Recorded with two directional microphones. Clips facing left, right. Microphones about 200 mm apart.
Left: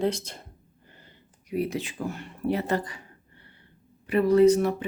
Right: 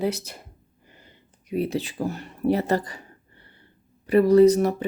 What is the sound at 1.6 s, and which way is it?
Speech, 35° right (ahead or behind).